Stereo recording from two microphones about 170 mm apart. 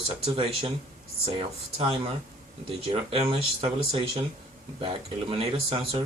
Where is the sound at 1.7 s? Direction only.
35° right (ahead or behind).